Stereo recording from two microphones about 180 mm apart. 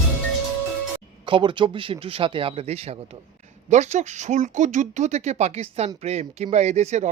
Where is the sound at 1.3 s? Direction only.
25° right (ahead or behind).